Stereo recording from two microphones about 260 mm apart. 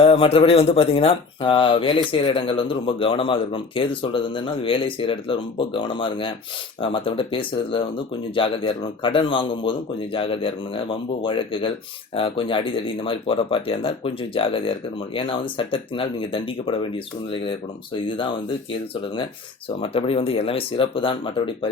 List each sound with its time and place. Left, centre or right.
0.0 s speech: left
17.9 s speech: centre
19.8 s speech: left